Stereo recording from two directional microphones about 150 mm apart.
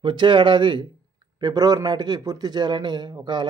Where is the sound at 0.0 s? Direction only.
30° right (ahead or behind).